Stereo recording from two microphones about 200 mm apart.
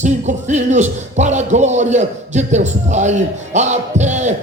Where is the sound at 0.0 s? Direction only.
35° right (ahead or behind).